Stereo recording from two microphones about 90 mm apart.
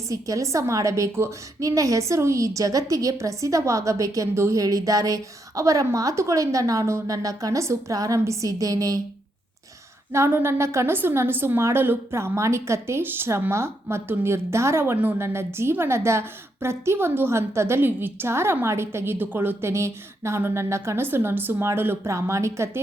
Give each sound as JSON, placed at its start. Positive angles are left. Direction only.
{"t": 0.1, "sound": "a woman's voice", "side_deg": -35}
{"t": 10.1, "sound": "a woman's voice", "side_deg": -30}